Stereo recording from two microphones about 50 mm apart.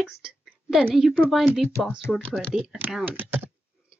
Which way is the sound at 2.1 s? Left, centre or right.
Centre.